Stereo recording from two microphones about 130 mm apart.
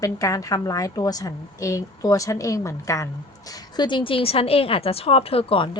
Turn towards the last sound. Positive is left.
turn(degrees=40)  # may be behind; listen again after turning